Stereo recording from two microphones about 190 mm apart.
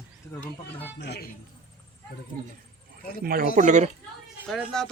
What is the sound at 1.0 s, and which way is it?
Speech, 60° left (ahead or behind).